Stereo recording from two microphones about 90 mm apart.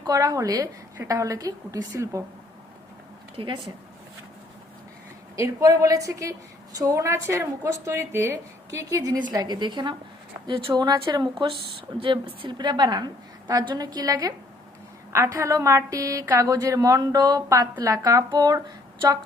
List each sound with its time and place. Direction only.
0.0 s a woman's voice: 40° right (ahead or behind)
3.3 s speech: 70° right (ahead or behind)
5.4 s a woman's voice: 40° right (ahead or behind)
9.4 s a woman's voice: 55° right (ahead or behind)
10.4 s speech: 70° right (ahead or behind)
10.8 s a woman's voice: 55° right (ahead or behind)
11.9 s a woman's voice: 75° right (ahead or behind); by 14.3 s 45° right (ahead or behind)
15.1 s a woman's voice: 30° right (ahead or behind)